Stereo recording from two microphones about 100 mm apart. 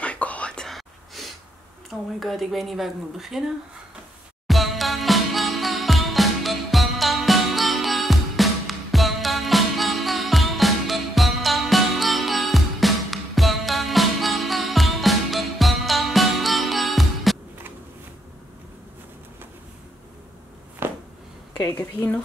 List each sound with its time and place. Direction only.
0.0 s whispering: 15° left (ahead or behind)
1.9 s speech: centre (ahead or behind)
4.5 s music: centre (ahead or behind)
20.8 s a sound: 20° right (ahead or behind)
21.7 s a woman's voice: 15° left (ahead or behind)